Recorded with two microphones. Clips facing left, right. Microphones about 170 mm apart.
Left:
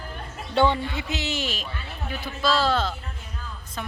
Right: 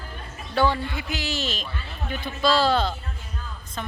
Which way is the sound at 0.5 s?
25° left (ahead or behind).